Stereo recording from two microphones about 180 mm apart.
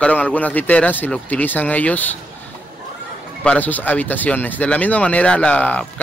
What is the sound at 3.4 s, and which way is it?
Speech, 10° left (ahead or behind).